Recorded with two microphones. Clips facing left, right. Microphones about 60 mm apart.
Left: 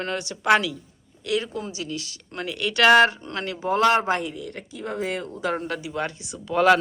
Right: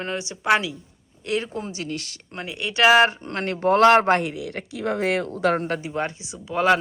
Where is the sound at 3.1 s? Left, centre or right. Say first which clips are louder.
Right 3 dB; right.